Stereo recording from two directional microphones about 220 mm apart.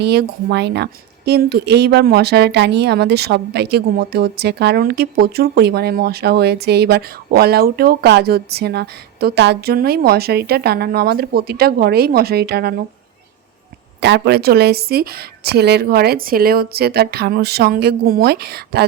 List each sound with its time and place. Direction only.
0.0 s speech: 50° right (ahead or behind)
14.0 s speech: 50° right (ahead or behind)